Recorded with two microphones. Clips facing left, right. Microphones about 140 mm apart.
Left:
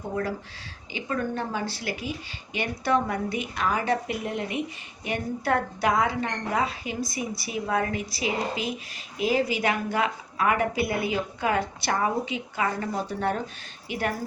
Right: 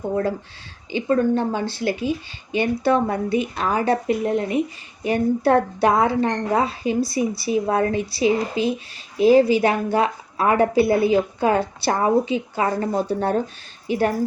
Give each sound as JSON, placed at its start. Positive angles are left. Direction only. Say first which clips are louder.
{"t": 0.9, "sound": "a woman's voice", "louder": "right 10 dB", "side_deg": -30}